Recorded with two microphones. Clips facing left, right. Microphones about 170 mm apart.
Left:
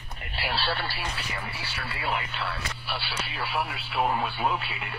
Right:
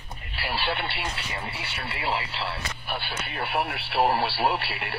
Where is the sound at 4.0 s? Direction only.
35° right (ahead or behind).